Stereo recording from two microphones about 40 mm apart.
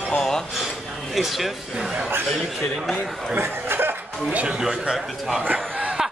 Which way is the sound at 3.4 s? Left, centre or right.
Right.